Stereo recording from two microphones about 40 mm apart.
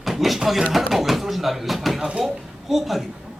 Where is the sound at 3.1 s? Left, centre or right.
Centre.